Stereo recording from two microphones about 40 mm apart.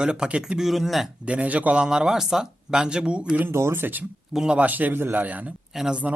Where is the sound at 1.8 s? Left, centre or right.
Centre.